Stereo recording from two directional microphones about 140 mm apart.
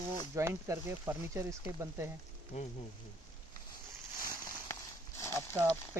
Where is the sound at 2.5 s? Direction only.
45° left (ahead or behind).